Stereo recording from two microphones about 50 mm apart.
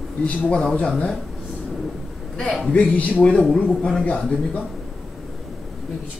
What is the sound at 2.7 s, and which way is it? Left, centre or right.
Speech, left.